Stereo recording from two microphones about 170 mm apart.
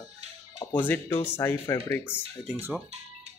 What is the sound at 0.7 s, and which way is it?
Speech, 10° left (ahead or behind).